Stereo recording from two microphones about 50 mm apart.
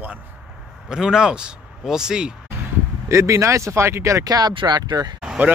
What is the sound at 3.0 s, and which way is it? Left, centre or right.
Speech, right.